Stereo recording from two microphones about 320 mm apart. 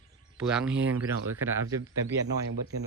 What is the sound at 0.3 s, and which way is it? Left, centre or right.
Speech, centre.